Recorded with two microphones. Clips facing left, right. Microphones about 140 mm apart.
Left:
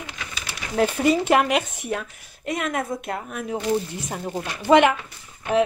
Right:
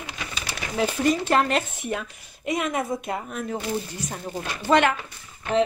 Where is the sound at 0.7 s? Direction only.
10° left (ahead or behind).